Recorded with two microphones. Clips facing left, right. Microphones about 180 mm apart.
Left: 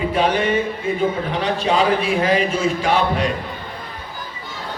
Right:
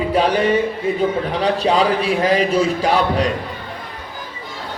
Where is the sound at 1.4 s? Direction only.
35° right (ahead or behind).